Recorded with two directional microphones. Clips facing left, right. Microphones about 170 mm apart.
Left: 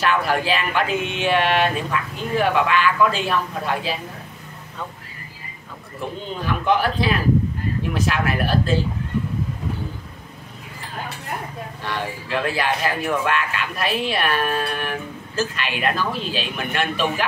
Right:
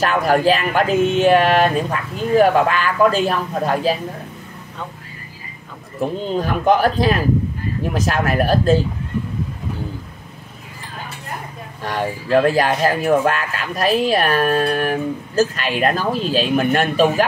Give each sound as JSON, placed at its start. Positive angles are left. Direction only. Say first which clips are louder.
{"t": 0.0, "sound": "speech", "louder": "right 5 dB", "side_deg": -40}
{"t": 5.9, "sound": "speech", "louder": "right 8 dB", "side_deg": -40}
{"t": 11.8, "sound": "speech", "louder": "right 6 dB", "side_deg": -40}